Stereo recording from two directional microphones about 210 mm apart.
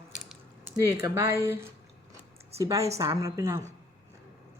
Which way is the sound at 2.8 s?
30° right (ahead or behind).